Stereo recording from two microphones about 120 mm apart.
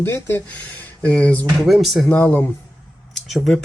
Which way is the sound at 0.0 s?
20° left (ahead or behind).